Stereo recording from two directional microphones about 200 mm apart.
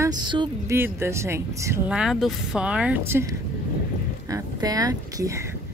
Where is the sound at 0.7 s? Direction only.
10° right (ahead or behind).